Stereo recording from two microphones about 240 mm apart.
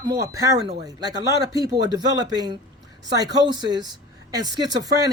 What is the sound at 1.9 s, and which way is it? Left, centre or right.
Speech, centre.